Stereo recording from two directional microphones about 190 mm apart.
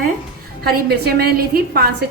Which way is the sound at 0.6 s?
55° right (ahead or behind).